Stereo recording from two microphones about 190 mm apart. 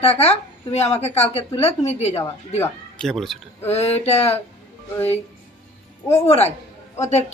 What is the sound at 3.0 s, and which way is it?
Speech, centre (ahead or behind).